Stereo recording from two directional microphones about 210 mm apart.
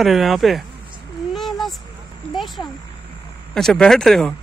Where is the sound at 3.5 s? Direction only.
5° left (ahead or behind).